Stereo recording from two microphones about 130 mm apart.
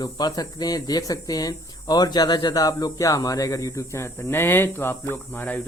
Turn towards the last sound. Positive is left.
turn(degrees=15)  # may be behind; listen again after turning